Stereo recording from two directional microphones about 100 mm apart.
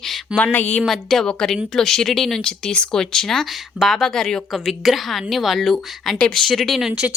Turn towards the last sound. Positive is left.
turn(degrees=-5)  # may be behind; listen again after turning